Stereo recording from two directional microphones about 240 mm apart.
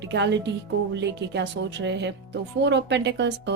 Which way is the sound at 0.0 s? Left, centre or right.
Right.